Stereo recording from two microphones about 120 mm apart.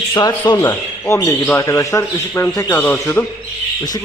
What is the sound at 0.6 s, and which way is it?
A man's voice, 25° left (ahead or behind).